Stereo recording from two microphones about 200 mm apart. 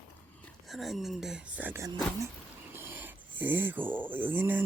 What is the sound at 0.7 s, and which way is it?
Speech, centre (ahead or behind).